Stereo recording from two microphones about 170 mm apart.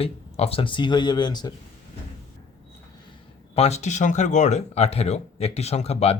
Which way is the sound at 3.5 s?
40° left (ahead or behind).